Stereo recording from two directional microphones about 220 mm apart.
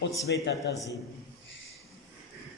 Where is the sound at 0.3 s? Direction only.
55° left (ahead or behind).